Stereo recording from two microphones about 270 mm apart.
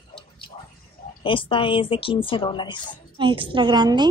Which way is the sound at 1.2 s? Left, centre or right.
Centre.